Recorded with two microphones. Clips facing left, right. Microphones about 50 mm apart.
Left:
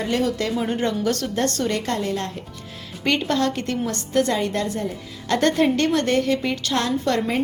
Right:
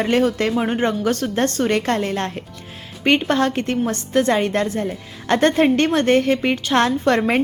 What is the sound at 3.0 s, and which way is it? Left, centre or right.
A woman's voice, right.